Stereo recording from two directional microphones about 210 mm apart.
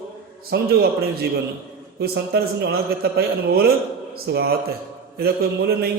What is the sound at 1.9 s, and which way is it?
Speech, 50° right (ahead or behind).